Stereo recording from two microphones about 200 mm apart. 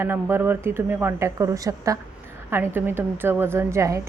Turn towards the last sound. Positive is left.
turn(degrees=-15)  # may be behind; listen again after turning